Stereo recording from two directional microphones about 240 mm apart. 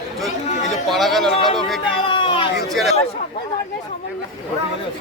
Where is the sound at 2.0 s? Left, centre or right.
Centre.